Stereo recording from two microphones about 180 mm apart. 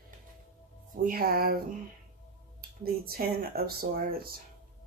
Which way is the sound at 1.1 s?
55° right (ahead or behind).